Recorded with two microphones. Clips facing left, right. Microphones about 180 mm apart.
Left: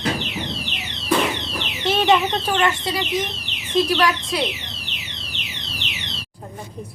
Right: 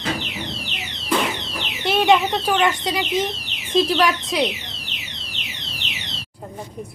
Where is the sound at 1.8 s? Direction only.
15° right (ahead or behind).